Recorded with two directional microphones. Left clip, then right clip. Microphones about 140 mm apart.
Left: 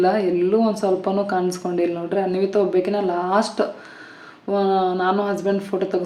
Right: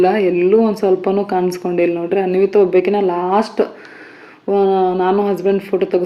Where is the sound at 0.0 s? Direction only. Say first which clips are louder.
Right 5 dB; 20° right (ahead or behind).